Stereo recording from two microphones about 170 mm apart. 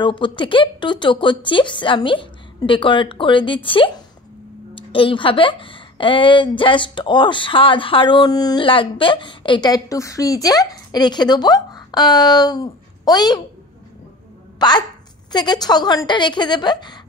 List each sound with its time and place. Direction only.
0.0 s speech: 30° left (ahead or behind)
14.6 s speech: 25° left (ahead or behind)